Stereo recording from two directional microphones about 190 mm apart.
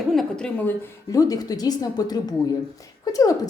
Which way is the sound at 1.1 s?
20° left (ahead or behind).